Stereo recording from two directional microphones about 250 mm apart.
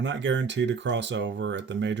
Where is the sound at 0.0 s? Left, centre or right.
Right.